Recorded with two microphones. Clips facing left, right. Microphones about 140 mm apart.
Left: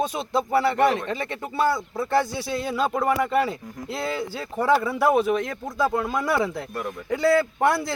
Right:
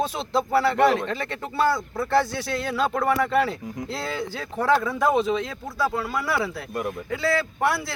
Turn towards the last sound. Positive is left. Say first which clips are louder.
# left 4 dB
turn(degrees=15)  # may be behind; listen again after turning